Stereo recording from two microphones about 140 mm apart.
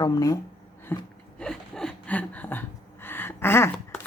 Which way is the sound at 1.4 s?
5° left (ahead or behind).